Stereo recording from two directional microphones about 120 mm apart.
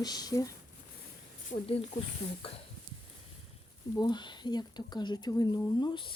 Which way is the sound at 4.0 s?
40° left (ahead or behind).